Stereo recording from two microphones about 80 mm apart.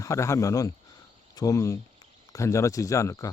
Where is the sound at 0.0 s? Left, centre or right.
Left.